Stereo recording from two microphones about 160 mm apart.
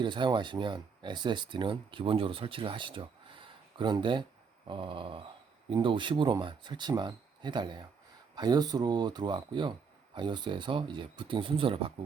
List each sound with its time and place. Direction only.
0.0 s speech: 30° right (ahead or behind)